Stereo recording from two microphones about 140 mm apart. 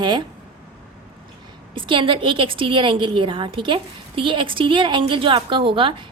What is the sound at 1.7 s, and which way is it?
A woman's voice, 35° right (ahead or behind).